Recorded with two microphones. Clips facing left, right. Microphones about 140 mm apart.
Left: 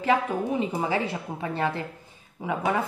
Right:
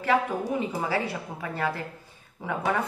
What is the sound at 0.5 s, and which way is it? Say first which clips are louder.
A woman's voice: left 2 dB; 20° left (ahead or behind).